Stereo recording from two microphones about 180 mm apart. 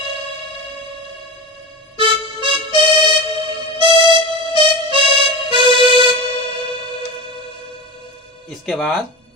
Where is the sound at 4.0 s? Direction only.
30° right (ahead or behind).